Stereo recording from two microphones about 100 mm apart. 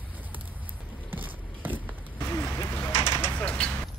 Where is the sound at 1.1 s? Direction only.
20° right (ahead or behind).